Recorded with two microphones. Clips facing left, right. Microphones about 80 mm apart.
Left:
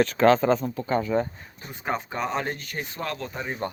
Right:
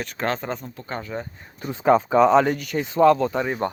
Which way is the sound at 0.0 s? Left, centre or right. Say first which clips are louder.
Left 8 dB; left.